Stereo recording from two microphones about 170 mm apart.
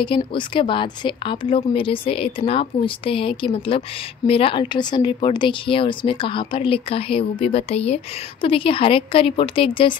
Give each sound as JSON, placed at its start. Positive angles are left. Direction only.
{"t": 0.0, "sound": "a woman's voice", "side_deg": 30}